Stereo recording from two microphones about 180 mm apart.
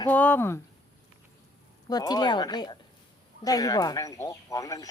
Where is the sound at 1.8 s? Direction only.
20° left (ahead or behind).